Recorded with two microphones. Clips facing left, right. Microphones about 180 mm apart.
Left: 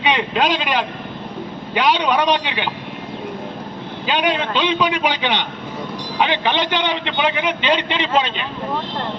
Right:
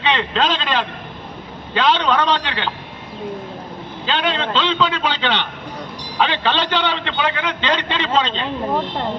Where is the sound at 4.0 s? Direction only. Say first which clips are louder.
Left 2 dB; 15° left (ahead or behind).